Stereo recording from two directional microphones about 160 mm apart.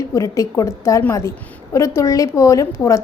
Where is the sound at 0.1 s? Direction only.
20° left (ahead or behind).